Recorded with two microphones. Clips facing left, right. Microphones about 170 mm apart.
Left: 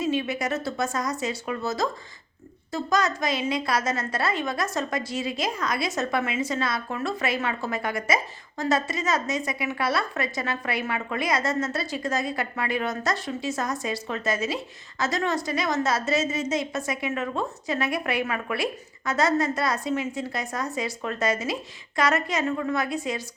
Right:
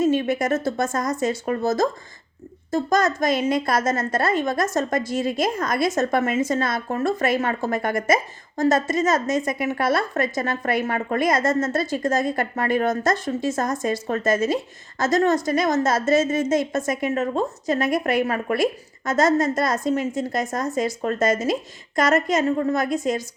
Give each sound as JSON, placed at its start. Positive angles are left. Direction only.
{"t": 0.0, "sound": "a woman's voice", "side_deg": -45}